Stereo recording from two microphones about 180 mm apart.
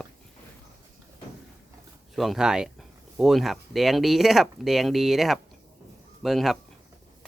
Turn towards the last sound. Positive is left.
turn(degrees=0)  # may be behind; listen again after turning